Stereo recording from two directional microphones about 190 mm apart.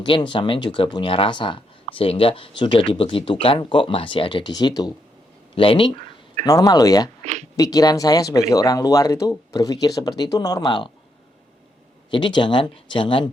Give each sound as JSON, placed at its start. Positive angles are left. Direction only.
{"t": 0.0, "sound": "speech", "side_deg": 25}
{"t": 7.2, "sound": "a sound", "side_deg": -40}
{"t": 7.5, "sound": "speech", "side_deg": 20}
{"t": 12.1, "sound": "speech", "side_deg": 25}